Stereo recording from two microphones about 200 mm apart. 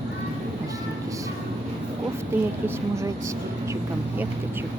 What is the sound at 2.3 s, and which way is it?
Speech, 10° right (ahead or behind).